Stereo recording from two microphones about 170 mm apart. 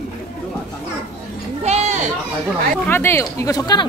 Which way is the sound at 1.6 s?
40° right (ahead or behind).